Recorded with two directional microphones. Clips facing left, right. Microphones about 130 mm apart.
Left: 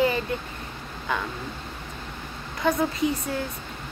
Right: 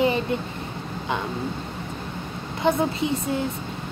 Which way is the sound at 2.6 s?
25° right (ahead or behind).